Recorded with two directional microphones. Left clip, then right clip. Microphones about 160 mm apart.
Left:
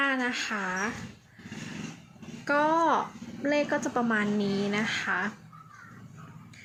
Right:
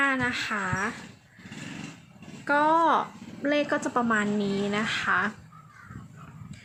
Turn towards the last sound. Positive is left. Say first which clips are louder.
# right 3 dB
turn(degrees=-20)  # may be behind; listen again after turning